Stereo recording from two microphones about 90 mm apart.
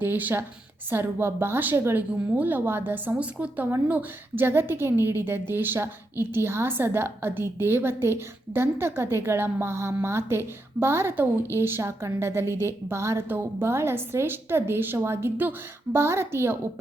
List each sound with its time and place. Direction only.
0.0 s a woman's voice: 20° right (ahead or behind)